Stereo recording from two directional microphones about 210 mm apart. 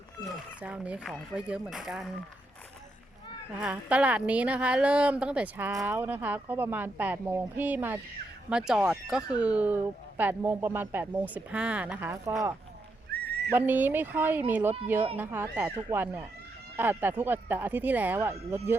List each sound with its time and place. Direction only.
0.3 s speech: 5° right (ahead or behind)
3.6 s a woman's voice: 5° right (ahead or behind)
13.1 s horse: 50° right (ahead or behind)
13.5 s a woman's voice: 10° right (ahead or behind)